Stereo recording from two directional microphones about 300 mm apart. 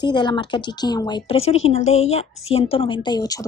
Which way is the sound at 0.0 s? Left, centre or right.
Centre.